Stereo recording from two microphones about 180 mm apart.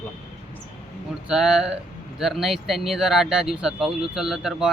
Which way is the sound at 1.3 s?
5° right (ahead or behind).